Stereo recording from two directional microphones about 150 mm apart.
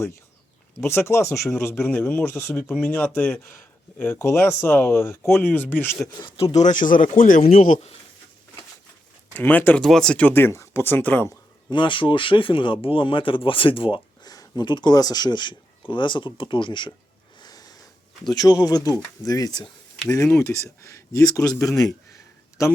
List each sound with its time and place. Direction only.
0.8 s speech: 15° left (ahead or behind)
6.2 s speech: 40° left (ahead or behind); by 7.9 s 60° left (ahead or behind)
9.3 s speech: 10° left (ahead or behind)
11.7 s speech: 30° left (ahead or behind)
17.4 s a sound: 25° left (ahead or behind)
18.3 s speech: 25° left (ahead or behind)
22.6 s speech: 20° left (ahead or behind)